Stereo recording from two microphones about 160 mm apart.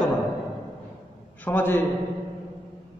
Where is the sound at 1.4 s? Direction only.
10° left (ahead or behind).